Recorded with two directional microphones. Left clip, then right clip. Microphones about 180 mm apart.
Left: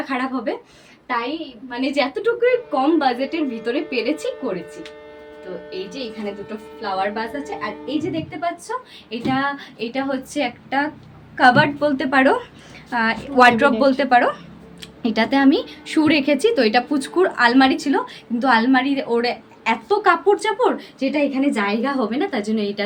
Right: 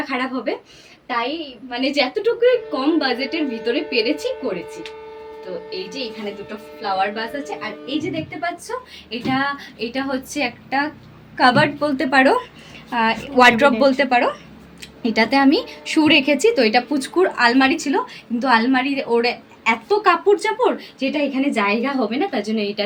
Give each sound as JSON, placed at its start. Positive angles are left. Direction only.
{"t": 0.1, "sound": "speech", "side_deg": 5}
{"t": 1.7, "sound": "speech", "side_deg": 10}
{"t": 6.8, "sound": "a woman's voice", "side_deg": 5}